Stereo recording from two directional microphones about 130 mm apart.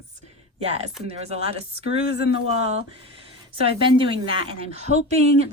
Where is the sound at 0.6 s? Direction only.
55° right (ahead or behind).